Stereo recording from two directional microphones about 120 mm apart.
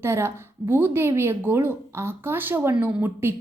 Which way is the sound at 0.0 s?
25° right (ahead or behind).